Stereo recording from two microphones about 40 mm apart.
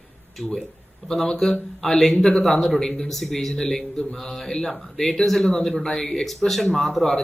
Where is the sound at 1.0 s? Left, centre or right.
Centre.